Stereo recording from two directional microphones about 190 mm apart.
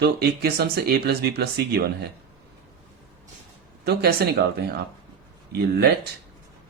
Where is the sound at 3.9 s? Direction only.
60° right (ahead or behind).